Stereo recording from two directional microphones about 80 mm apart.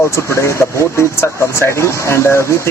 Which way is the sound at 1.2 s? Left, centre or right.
Left.